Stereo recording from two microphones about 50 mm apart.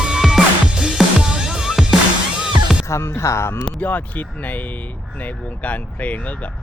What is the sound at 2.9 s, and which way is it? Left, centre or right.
Speech, left.